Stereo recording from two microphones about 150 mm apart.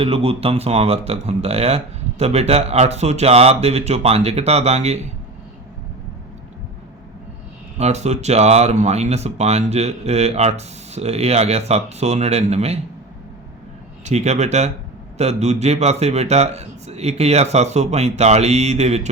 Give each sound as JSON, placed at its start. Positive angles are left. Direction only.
{"t": 0.0, "sound": "speech", "side_deg": -40}
{"t": 7.8, "sound": "speech", "side_deg": -45}
{"t": 14.0, "sound": "speech", "side_deg": -50}